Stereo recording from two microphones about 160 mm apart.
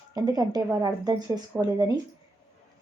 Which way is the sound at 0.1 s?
25° right (ahead or behind).